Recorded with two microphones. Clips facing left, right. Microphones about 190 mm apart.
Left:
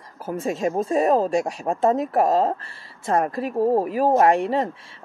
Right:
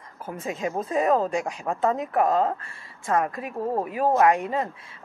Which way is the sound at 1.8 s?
35° left (ahead or behind).